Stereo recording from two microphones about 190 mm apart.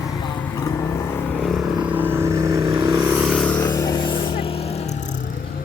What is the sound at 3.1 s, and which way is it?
Vehicle, 5° right (ahead or behind).